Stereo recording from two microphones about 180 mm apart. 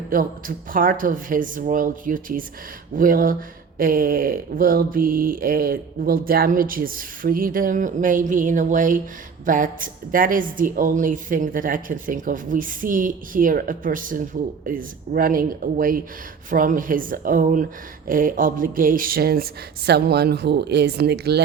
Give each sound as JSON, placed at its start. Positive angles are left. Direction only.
{"t": 0.1, "sound": "a woman's voice", "side_deg": -50}